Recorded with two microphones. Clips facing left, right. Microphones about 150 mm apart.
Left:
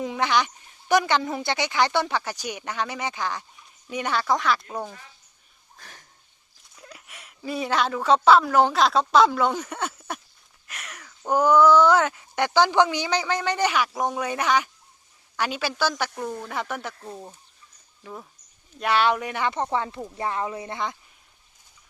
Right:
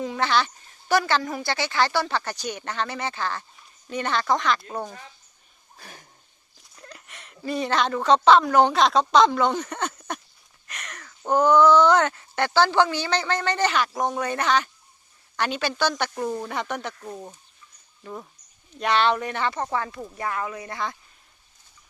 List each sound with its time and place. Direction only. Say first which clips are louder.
0.0 s speech: even; 15° left (ahead or behind)
5.7 s a sound: right 3 dB; 10° right (ahead or behind)
6.6 s speech: right 1 dB; 5° left (ahead or behind); by 20.9 s 20° left (ahead or behind)